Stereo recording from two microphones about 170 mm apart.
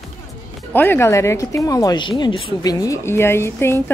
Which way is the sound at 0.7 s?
10° left (ahead or behind).